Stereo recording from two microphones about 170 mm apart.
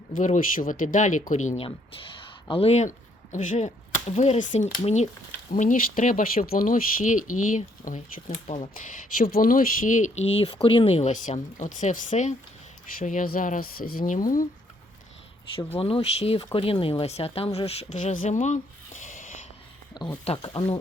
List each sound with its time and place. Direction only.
0.3 s speech: 55° left (ahead or behind); by 5.0 s 40° left (ahead or behind)
5.5 s speech: 50° left (ahead or behind)
9.1 s speech: 55° left (ahead or behind)
10.4 s speech: 30° left (ahead or behind); by 14.4 s 55° left (ahead or behind)
15.8 s speech: 35° left (ahead or behind)
20.2 s speech: 30° left (ahead or behind)